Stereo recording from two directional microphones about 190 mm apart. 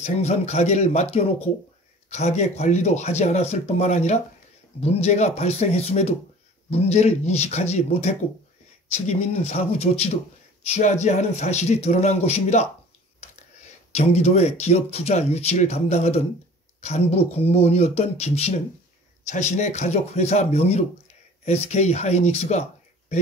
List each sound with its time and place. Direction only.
0.0 s speech: 35° left (ahead or behind)
2.0 s speech: 35° left (ahead or behind)
13.9 s speech: 35° left (ahead or behind)